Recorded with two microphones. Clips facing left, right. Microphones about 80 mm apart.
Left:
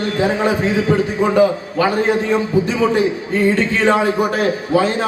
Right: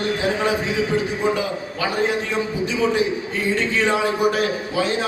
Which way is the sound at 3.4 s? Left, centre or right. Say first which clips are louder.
Left 5 dB; left.